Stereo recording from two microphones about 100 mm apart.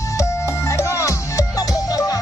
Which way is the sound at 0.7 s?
30° left (ahead or behind).